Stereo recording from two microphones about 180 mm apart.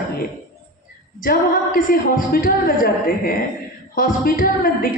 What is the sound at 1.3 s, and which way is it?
A woman's voice, 55° left (ahead or behind).